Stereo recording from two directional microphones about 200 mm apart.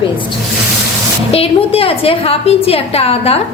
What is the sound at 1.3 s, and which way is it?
A woman's voice, 30° left (ahead or behind).